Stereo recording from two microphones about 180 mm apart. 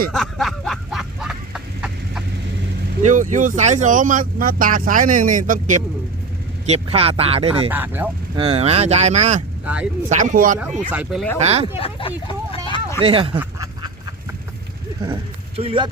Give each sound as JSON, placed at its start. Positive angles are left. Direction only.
{"t": 0.1, "sound": "a sound", "side_deg": 0}
{"t": 3.0, "sound": "speech", "side_deg": -45}
{"t": 6.7, "sound": "speech", "side_deg": -35}
{"t": 7.7, "sound": "speech", "side_deg": -10}
{"t": 8.4, "sound": "speech", "side_deg": -35}
{"t": 9.6, "sound": "speech", "side_deg": -5}
{"t": 10.1, "sound": "speech", "side_deg": -45}
{"t": 10.6, "sound": "speech", "side_deg": -5}
{"t": 11.8, "sound": "a sound", "side_deg": 30}
{"t": 13.1, "sound": "speech", "side_deg": -30}
{"t": 15.0, "sound": "speech", "side_deg": -30}